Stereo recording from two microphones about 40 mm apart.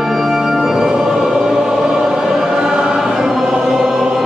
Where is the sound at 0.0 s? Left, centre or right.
Centre.